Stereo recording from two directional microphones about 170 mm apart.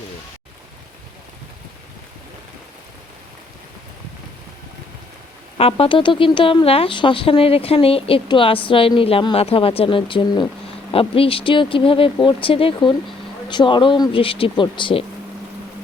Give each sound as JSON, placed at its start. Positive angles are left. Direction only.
{"t": 5.5, "sound": "speech", "side_deg": 35}